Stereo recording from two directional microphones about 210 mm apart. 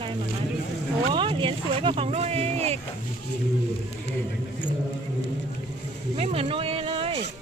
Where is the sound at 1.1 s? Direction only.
25° right (ahead or behind).